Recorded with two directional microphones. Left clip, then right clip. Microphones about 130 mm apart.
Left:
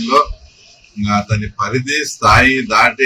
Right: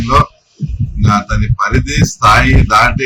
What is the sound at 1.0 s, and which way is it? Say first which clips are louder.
A man's voice: right 3 dB; 15° right (ahead or behind).